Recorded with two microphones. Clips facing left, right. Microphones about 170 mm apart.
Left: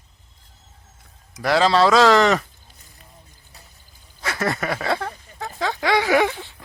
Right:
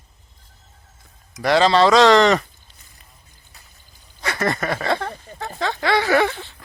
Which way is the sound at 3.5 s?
35° left (ahead or behind).